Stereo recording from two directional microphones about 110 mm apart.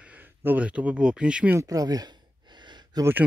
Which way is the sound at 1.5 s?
35° right (ahead or behind).